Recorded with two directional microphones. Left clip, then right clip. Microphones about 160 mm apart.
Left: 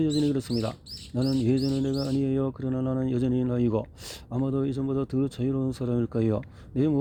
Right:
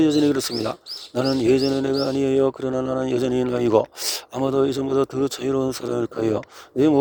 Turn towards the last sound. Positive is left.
turn(degrees=-35)  # may be behind; listen again after turning